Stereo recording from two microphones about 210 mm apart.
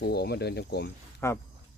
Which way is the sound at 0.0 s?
50° left (ahead or behind).